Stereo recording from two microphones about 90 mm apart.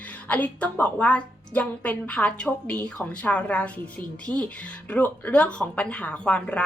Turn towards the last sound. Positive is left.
turn(degrees=15)  # may be behind; listen again after turning